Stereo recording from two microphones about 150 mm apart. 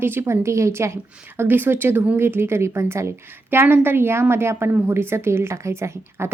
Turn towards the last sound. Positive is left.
turn(degrees=-15)  # may be behind; listen again after turning